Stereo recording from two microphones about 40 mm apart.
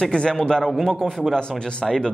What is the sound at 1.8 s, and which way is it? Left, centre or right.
Speech, centre.